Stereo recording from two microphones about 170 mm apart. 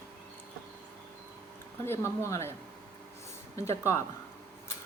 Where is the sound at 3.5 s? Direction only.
40° right (ahead or behind).